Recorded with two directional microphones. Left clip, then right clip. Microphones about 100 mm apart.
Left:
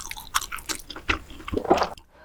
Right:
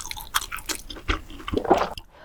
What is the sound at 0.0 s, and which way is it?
Chewing, centre (ahead or behind).